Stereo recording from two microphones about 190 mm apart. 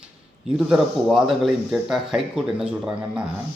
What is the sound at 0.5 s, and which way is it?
Speech, centre (ahead or behind).